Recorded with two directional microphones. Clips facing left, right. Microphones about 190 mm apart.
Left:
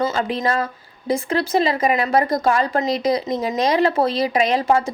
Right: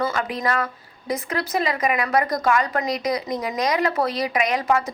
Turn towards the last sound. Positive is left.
turn(degrees=30)  # may be behind; listen again after turning